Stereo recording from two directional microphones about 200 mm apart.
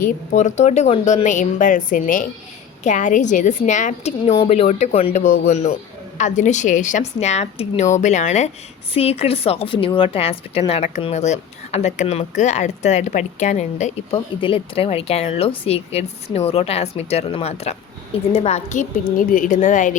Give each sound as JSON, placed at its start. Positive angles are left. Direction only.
{"t": 0.0, "sound": "a woman's voice", "side_deg": 35}
{"t": 14.1, "sound": "speech", "side_deg": 25}